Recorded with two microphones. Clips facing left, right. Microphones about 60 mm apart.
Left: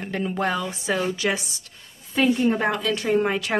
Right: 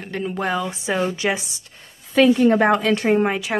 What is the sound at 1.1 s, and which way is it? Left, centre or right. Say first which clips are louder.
Speech: right 2 dB; right.